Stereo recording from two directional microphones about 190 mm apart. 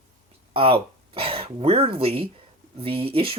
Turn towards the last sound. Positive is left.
turn(degrees=-30)  # may be behind; listen again after turning